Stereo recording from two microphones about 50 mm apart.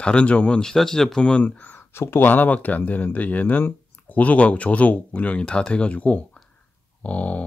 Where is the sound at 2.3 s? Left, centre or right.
Left.